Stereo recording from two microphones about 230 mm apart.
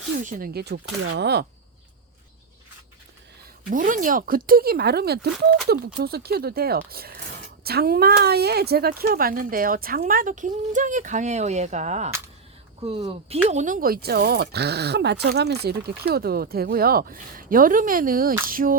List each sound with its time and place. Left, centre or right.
0.2 s speech: right
3.7 s speech: right
13.5 s speech: right